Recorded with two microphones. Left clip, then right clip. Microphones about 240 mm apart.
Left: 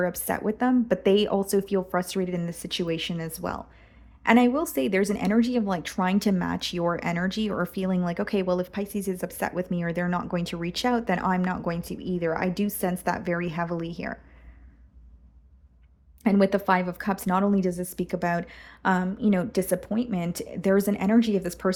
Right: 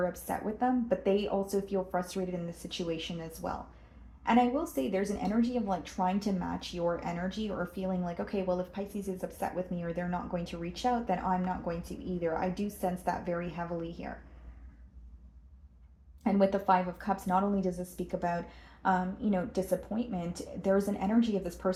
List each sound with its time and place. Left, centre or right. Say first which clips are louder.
0.0 s a woman's voice: left 6 dB; left
16.2 s a woman's voice: left 5 dB; left